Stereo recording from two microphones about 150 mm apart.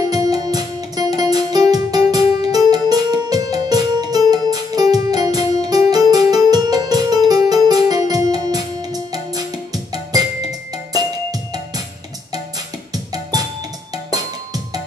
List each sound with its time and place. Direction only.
0.1 s music: 25° right (ahead or behind)
12.9 s music: 25° right (ahead or behind)